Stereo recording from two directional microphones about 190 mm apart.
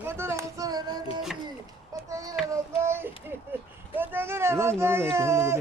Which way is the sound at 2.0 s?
15° right (ahead or behind).